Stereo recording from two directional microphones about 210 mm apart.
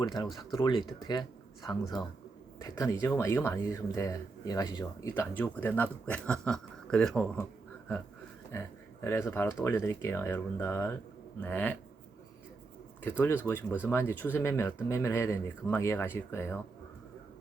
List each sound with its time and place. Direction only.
0.0 s speech: 20° left (ahead or behind)
2.6 s speech: 15° left (ahead or behind)
9.0 s speech: 10° left (ahead or behind)
13.0 s speech: 10° left (ahead or behind)